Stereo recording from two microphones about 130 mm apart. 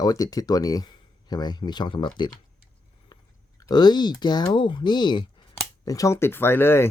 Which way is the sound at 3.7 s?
35° left (ahead or behind).